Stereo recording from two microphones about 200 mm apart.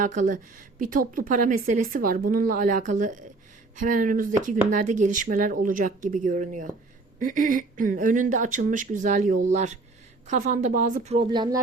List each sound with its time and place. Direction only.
0.0 s a woman's voice: 40° right (ahead or behind); by 11.4 s 25° right (ahead or behind)